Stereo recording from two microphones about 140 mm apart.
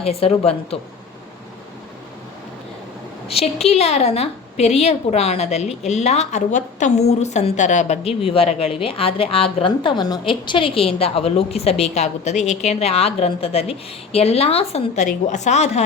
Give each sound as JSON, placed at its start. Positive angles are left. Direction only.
{"t": 0.0, "sound": "a woman's voice", "side_deg": 45}
{"t": 3.2, "sound": "a woman's voice", "side_deg": 45}